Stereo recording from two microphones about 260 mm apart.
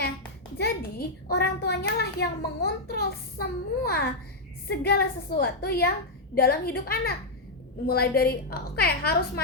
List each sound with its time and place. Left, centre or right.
0.5 s a child's voice: left